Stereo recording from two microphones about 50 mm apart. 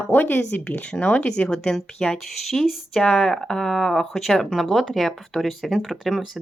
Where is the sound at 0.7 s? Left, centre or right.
Left.